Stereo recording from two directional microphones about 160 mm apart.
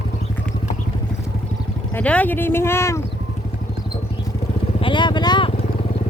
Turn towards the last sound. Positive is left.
turn(degrees=30)  # may be behind; listen again after turning